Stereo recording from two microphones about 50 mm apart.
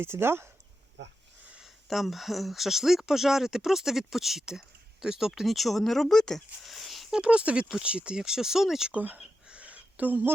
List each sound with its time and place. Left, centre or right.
0.0 s speech: right
1.6 s speech: centre
6.7 s a sound: centre
7.1 s speech: centre
8.9 s speech: right
9.5 s a sound: right